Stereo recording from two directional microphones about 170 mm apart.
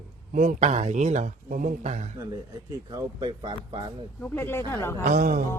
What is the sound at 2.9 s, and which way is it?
Speech, 25° right (ahead or behind).